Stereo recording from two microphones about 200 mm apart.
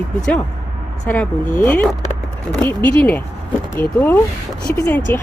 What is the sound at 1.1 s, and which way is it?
Speech, 5° left (ahead or behind).